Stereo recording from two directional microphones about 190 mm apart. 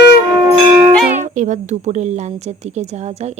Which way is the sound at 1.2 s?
40° right (ahead or behind).